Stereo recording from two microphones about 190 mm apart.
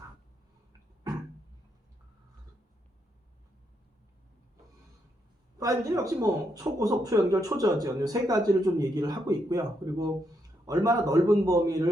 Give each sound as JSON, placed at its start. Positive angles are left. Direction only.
{"t": 5.5, "sound": "a man's voice", "side_deg": -15}